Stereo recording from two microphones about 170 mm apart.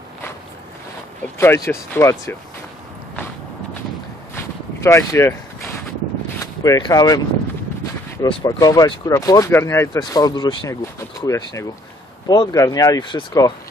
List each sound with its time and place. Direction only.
1.4 s speech: 15° left (ahead or behind)
4.4 s a sound: 15° left (ahead or behind)
6.4 s speech: 20° left (ahead or behind)
8.2 s speech: 25° left (ahead or behind)